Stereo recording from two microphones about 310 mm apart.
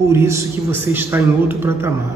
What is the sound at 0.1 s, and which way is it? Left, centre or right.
A man's voice, centre.